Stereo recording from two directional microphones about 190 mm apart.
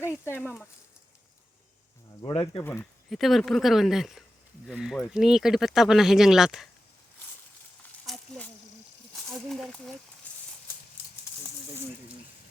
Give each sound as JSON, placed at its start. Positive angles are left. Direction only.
{"t": 0.0, "sound": "speech", "side_deg": 10}
{"t": 2.2, "sound": "speech", "side_deg": 30}
{"t": 2.6, "sound": "speech", "side_deg": 10}
{"t": 3.1, "sound": "speech", "side_deg": 0}
{"t": 8.0, "sound": "snake", "side_deg": 0}
{"t": 9.1, "sound": "speech", "side_deg": 0}